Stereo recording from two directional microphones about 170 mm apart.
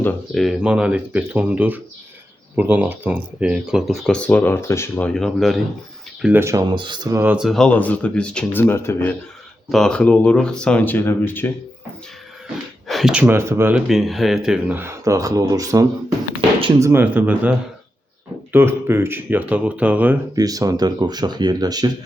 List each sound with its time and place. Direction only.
0.0 s speech: 10° left (ahead or behind)
0.4 s speech: 5° right (ahead or behind)
6.2 s speech: 15° right (ahead or behind)
6.7 s speech: 25° right (ahead or behind)
7.3 s speech: centre (ahead or behind)
9.6 s speech: centre (ahead or behind)
12.9 s speech: centre (ahead or behind)
13.8 s speech: centre (ahead or behind)
20.3 s speech: 20° right (ahead or behind)